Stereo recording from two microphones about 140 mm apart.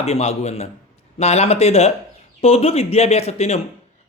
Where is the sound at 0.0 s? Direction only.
50° left (ahead or behind).